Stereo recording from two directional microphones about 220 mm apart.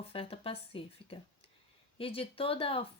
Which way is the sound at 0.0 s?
25° left (ahead or behind).